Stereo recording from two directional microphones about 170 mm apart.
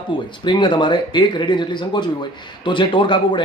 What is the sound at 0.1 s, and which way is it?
A man's voice, 30° left (ahead or behind).